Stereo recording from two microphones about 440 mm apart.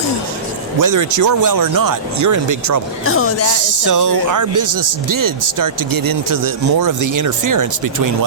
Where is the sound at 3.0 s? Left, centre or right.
Left.